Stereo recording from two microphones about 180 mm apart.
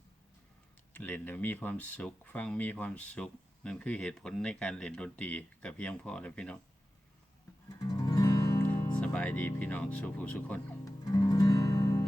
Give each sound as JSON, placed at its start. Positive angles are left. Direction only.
{"t": 0.9, "sound": "speech", "side_deg": 10}
{"t": 7.9, "sound": "music", "side_deg": 20}
{"t": 9.0, "sound": "speech", "side_deg": 5}
{"t": 11.0, "sound": "music", "side_deg": 20}